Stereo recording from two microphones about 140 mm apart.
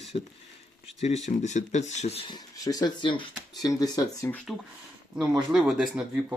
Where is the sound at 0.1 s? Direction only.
50° left (ahead or behind).